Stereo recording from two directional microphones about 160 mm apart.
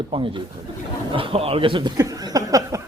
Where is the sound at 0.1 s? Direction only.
35° right (ahead or behind).